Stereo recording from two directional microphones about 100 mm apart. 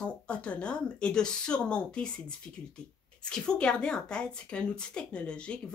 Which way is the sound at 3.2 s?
10° left (ahead or behind).